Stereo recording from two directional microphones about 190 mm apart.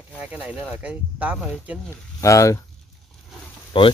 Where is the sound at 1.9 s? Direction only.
15° left (ahead or behind).